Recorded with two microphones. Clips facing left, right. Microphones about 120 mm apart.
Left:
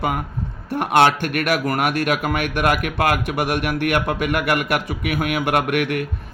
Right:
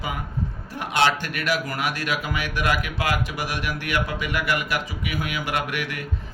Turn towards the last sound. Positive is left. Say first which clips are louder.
# left 8 dB
turn(degrees=60)  # may be behind; listen again after turning